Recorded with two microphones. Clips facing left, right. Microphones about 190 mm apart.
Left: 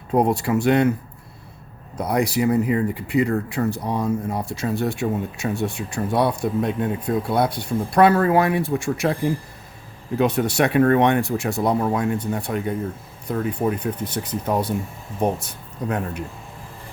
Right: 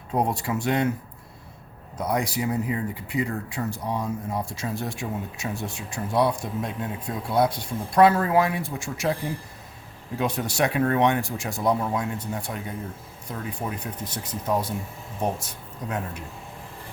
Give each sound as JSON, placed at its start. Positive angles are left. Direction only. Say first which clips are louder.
{"t": 0.1, "sound": "speech", "louder": "left 6 dB", "side_deg": 65}
{"t": 2.0, "sound": "speech", "louder": "left 5 dB", "side_deg": 65}
{"t": 10.2, "sound": "speech", "louder": "left 6 dB", "side_deg": 60}